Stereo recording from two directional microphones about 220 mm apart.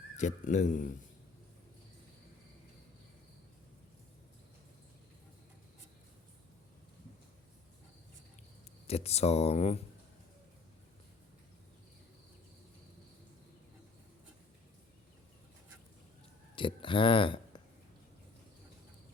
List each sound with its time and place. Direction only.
0.2 s a man's voice: 35° left (ahead or behind)
8.9 s speech: 30° left (ahead or behind)
16.6 s speech: 25° left (ahead or behind)